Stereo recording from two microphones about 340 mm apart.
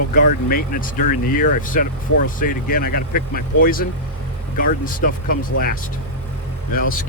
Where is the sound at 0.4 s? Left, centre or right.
Left.